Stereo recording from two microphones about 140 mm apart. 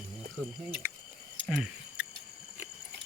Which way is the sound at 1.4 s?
5° right (ahead or behind).